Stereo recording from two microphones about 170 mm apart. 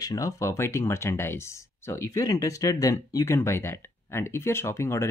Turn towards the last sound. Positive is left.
turn(degrees=15)  # may be behind; listen again after turning